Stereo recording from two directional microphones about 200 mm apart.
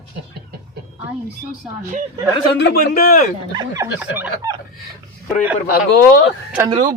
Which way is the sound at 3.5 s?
15° right (ahead or behind).